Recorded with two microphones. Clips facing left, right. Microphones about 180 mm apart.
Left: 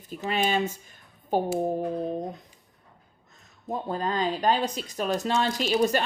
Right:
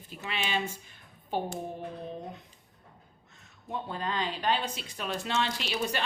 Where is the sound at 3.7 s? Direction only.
40° left (ahead or behind).